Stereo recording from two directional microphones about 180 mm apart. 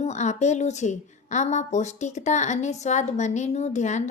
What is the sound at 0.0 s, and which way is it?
A woman's voice, 40° left (ahead or behind).